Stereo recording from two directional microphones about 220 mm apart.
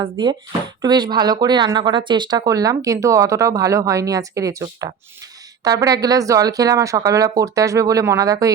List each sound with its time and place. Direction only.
0.0 s speech: 20° right (ahead or behind)